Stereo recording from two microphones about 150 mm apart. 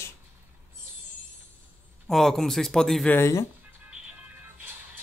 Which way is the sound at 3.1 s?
20° left (ahead or behind).